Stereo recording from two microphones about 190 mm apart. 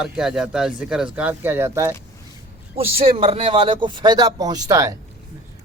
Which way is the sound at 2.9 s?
30° right (ahead or behind).